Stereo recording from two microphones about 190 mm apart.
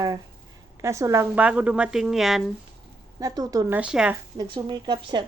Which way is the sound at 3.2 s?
20° right (ahead or behind).